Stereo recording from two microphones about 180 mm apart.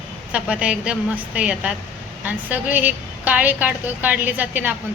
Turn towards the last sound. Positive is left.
turn(degrees=-10)  # may be behind; listen again after turning